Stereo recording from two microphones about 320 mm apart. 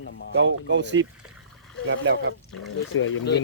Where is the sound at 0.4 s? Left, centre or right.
Right.